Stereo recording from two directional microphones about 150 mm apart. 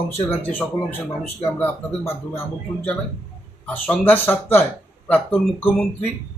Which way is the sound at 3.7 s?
10° left (ahead or behind).